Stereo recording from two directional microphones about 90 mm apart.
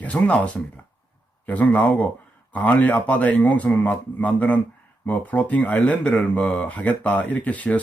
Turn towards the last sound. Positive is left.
turn(degrees=15)  # may be behind; listen again after turning